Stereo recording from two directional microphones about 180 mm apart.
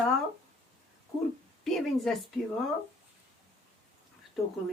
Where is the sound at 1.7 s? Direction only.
Centre (ahead or behind).